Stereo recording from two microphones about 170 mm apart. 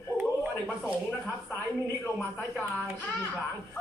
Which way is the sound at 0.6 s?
5° left (ahead or behind).